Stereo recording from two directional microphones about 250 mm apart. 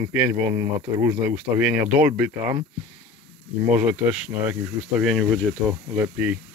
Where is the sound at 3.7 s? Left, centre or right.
Centre.